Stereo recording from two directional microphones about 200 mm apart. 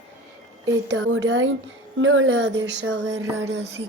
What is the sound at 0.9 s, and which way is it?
Speech, 70° right (ahead or behind).